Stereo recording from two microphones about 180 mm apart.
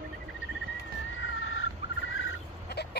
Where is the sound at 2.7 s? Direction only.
65° left (ahead or behind).